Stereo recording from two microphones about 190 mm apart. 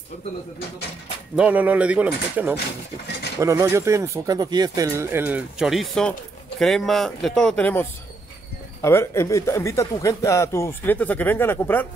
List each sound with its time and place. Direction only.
1.3 s speech: 5° right (ahead or behind)
8.8 s speech: 15° left (ahead or behind)